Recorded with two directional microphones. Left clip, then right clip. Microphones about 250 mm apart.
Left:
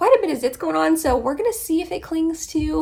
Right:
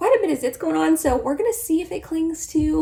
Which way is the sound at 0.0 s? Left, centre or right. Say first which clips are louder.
Left 2 dB; centre.